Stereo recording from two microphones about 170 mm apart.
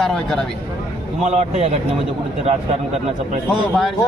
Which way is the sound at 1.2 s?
40° right (ahead or behind).